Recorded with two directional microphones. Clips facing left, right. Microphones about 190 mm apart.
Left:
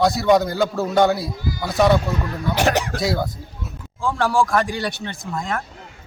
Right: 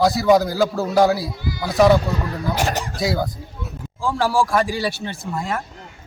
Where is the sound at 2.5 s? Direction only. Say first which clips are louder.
Left 8 dB; 70° left (ahead or behind).